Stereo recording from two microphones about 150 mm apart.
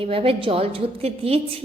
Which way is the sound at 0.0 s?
40° right (ahead or behind).